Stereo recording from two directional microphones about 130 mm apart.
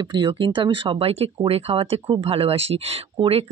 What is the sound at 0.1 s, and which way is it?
Speech, 40° right (ahead or behind).